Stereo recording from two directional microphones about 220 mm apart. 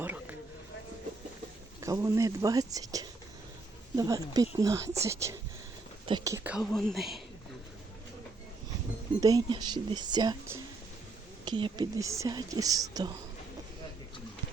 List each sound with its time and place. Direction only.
0.0 s vehicle: 10° right (ahead or behind)
1.8 s speech: 15° right (ahead or behind)
9.2 s speech: 15° right (ahead or behind)